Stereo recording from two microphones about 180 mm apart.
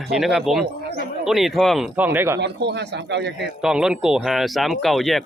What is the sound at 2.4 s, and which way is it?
A man's voice, 70° right (ahead or behind).